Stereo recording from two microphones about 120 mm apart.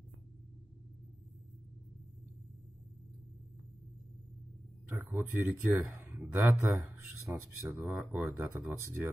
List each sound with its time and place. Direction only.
4.8 s speech: 15° right (ahead or behind)